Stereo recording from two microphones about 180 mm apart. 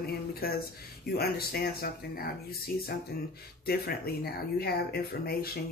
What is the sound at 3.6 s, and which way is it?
Music, 60° left (ahead or behind).